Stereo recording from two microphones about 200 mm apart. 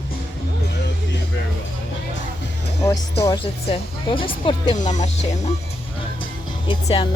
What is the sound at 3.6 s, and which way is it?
Speech, 25° left (ahead or behind).